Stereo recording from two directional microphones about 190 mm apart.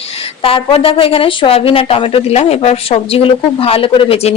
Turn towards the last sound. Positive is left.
turn(degrees=30)  # may be behind; listen again after turning